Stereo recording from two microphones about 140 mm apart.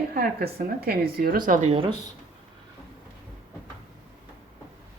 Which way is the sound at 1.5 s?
55° right (ahead or behind).